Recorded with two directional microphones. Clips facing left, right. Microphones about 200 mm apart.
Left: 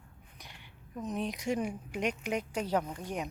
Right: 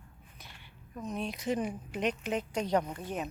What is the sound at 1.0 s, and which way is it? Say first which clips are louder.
A woman's voice: even; 20° left (ahead or behind).